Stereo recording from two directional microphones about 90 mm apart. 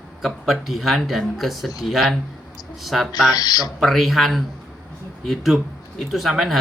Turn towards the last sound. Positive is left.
turn(degrees=0)  # may be behind; listen again after turning